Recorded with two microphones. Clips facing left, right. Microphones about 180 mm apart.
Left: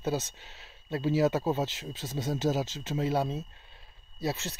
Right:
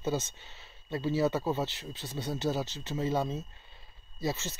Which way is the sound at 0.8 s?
10° left (ahead or behind).